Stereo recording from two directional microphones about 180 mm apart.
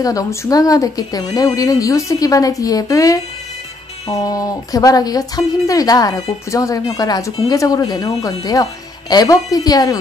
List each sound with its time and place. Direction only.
0.0 s a woman's voice: 20° left (ahead or behind)